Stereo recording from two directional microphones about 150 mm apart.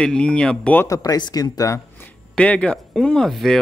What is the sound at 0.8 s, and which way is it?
Speech, 25° left (ahead or behind).